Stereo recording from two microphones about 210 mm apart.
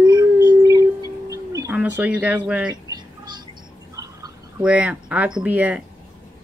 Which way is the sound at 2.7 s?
20° right (ahead or behind).